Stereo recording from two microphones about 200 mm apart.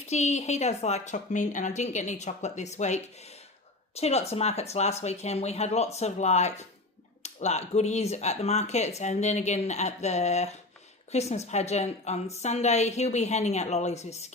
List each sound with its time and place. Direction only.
0.1 s a woman's voice: 35° left (ahead or behind)